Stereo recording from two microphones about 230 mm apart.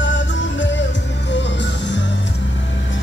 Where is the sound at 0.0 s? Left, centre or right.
Left.